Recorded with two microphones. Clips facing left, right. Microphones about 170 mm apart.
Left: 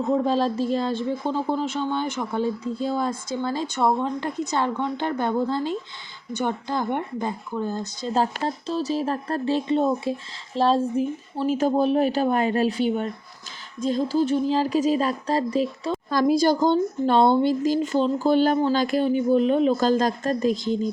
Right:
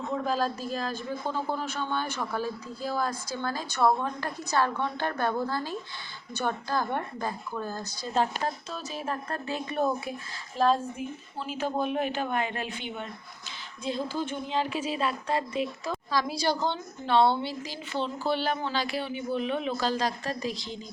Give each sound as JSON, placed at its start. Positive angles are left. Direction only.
{"t": 0.0, "sound": "speech", "side_deg": 30}
{"t": 8.1, "sound": "speech", "side_deg": 35}
{"t": 16.0, "sound": "speech", "side_deg": 50}